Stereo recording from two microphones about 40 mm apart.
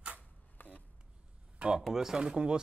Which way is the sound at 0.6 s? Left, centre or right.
Left.